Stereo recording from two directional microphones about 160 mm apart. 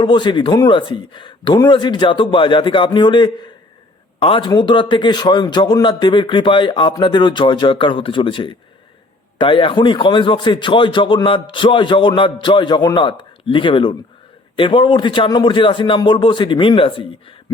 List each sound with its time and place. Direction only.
0.0 s a man's voice: 30° left (ahead or behind)